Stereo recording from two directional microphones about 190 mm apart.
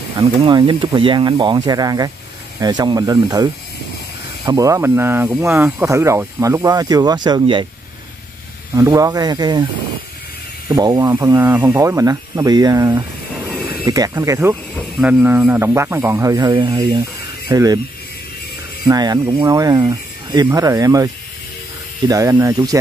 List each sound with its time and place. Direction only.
0.2 s speech: 25° right (ahead or behind)
4.5 s speech: 15° right (ahead or behind)
8.7 s speech: 15° right (ahead or behind)
10.7 s speech: 20° right (ahead or behind)
18.9 s speech: 20° right (ahead or behind)